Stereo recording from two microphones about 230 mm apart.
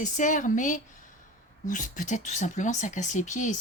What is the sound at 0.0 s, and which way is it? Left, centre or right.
Speech, left.